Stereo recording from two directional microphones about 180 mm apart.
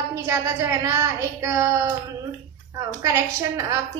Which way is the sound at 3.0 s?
15° right (ahead or behind).